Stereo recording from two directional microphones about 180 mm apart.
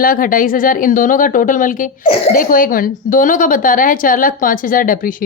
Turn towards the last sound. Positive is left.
turn(degrees=50)  # may be behind; listen again after turning